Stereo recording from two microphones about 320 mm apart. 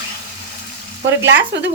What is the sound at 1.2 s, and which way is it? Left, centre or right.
Stir, right.